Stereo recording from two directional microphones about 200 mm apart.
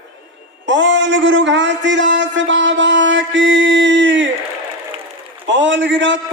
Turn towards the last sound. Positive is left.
turn(degrees=-65)  # may be behind; listen again after turning